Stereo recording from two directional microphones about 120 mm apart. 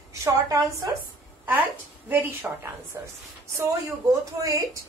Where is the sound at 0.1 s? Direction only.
25° right (ahead or behind).